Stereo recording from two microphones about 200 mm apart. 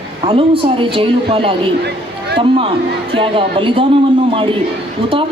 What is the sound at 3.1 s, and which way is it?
A man's voice, 25° right (ahead or behind).